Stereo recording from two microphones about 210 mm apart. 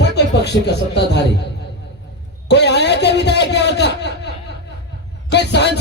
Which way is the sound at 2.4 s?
55° left (ahead or behind).